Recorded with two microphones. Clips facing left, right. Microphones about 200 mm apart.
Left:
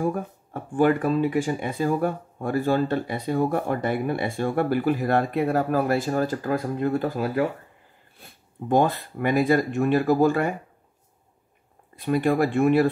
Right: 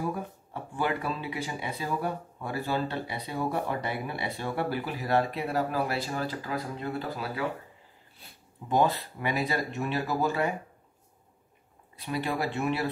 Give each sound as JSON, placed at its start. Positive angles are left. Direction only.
{"t": 0.0, "sound": "speech", "side_deg": 50}
{"t": 11.9, "sound": "speech", "side_deg": 50}